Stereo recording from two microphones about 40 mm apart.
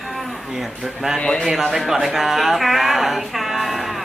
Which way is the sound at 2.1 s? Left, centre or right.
Centre.